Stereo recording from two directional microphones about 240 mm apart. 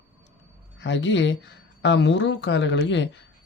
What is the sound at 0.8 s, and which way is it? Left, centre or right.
Speech, left.